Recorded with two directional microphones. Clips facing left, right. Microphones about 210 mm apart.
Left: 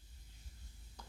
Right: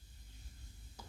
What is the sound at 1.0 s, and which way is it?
Sizzle, 5° right (ahead or behind).